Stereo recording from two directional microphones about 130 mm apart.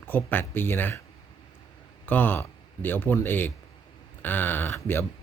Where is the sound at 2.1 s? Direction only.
15° left (ahead or behind).